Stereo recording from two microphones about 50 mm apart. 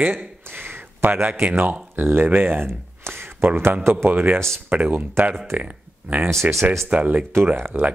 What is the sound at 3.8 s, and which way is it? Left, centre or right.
Speech, right.